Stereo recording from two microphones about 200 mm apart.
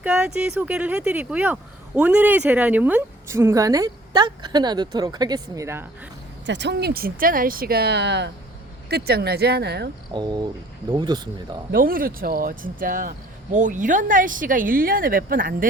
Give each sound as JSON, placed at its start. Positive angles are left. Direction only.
{"t": 0.0, "sound": "a woman's voice", "side_deg": -5}
{"t": 6.4, "sound": "speech", "side_deg": -60}
{"t": 10.1, "sound": "speech", "side_deg": -20}
{"t": 11.7, "sound": "speech", "side_deg": -45}